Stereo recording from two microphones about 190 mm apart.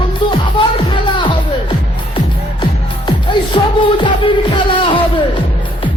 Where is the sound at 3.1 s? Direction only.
25° left (ahead or behind).